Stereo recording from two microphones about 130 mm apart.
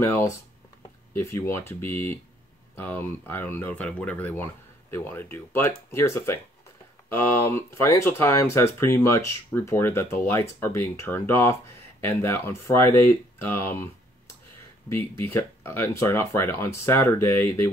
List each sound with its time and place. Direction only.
0.0 s speech: 20° left (ahead or behind)